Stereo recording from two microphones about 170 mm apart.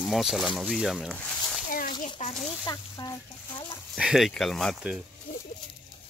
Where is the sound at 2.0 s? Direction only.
40° left (ahead or behind).